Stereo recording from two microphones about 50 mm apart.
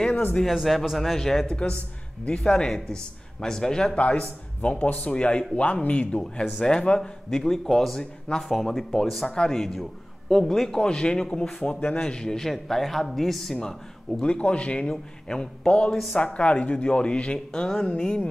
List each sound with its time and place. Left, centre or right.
0.5 s a man's voice: centre
3.9 s speech: left
6.6 s a man's voice: centre
8.5 s speech: centre
9.3 s a man's voice: centre
14.2 s speech: left